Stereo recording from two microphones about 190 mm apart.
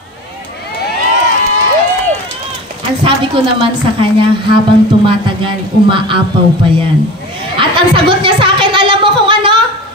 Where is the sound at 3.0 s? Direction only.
25° right (ahead or behind).